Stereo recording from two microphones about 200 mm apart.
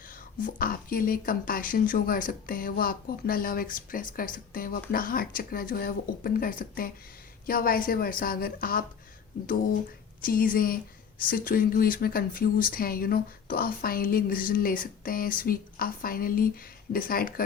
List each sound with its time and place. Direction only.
0.1 s speech: 45° left (ahead or behind)
10.2 s speech: 45° left (ahead or behind)